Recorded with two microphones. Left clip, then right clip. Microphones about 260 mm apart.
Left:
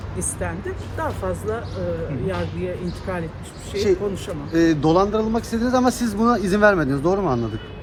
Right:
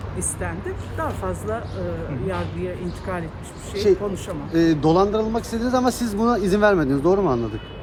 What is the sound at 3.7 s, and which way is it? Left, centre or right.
Speech, left.